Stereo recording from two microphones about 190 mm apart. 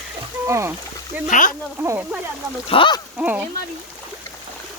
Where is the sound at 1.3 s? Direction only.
40° left (ahead or behind).